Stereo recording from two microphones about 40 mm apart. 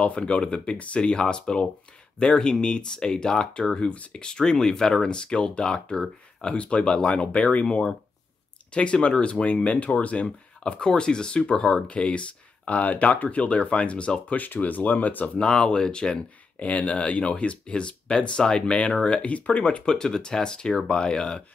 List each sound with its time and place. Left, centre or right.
0.0 s speech: left
8.7 s speech: left
14.3 s speech: left
15.2 s speech: left
16.5 s speech: left
19.9 s speech: centre